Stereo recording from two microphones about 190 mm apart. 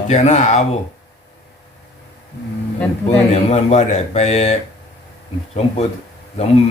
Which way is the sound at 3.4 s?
35° left (ahead or behind).